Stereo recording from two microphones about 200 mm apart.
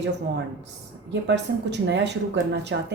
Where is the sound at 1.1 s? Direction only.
60° right (ahead or behind).